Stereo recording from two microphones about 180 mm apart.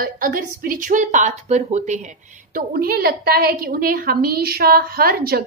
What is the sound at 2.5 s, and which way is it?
A woman's voice, 55° right (ahead or behind).